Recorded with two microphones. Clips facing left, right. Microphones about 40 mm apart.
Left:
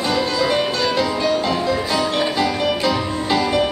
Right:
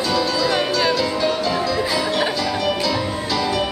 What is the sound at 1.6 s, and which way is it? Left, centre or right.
Music, left.